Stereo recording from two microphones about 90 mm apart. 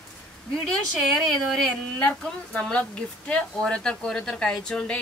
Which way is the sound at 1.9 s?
10° left (ahead or behind).